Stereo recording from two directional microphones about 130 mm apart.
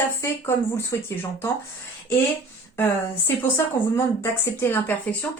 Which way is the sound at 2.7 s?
15° left (ahead or behind).